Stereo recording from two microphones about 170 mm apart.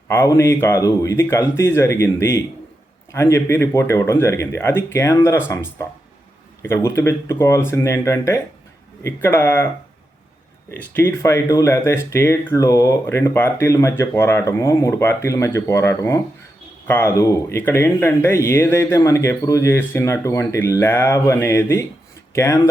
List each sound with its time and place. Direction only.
0.1 s speech: 15° left (ahead or behind)
10.7 s speech: 15° left (ahead or behind)